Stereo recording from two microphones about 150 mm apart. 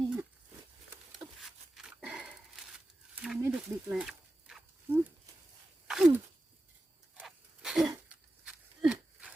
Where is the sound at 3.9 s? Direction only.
5° right (ahead or behind).